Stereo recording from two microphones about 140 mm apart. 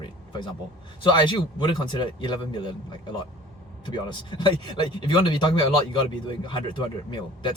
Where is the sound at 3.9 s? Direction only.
30° left (ahead or behind).